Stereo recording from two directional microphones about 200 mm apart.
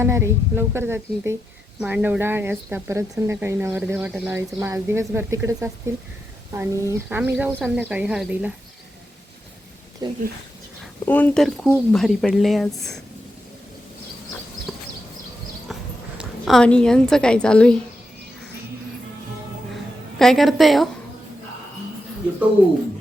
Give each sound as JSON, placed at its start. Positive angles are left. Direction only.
{"t": 0.0, "sound": "speech", "side_deg": -15}
{"t": 10.0, "sound": "speech", "side_deg": -20}
{"t": 11.0, "sound": "a woman's voice", "side_deg": 10}
{"t": 14.7, "sound": "a sound", "side_deg": 0}
{"t": 15.7, "sound": "a woman's voice", "side_deg": 0}
{"t": 20.1, "sound": "a woman's voice", "side_deg": 0}